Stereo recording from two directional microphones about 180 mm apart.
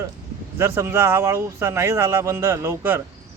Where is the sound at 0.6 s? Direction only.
15° right (ahead or behind).